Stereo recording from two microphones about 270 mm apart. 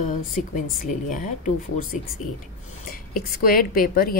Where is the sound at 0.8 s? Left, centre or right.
Left.